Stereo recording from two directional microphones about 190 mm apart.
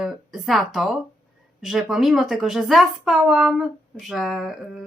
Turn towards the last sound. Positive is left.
turn(degrees=0)  # may be behind; listen again after turning